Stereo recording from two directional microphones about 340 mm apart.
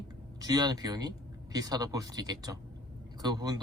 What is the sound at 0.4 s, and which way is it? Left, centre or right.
Speech, centre.